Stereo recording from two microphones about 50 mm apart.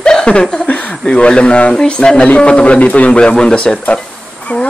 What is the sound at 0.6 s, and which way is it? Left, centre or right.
Speech, left.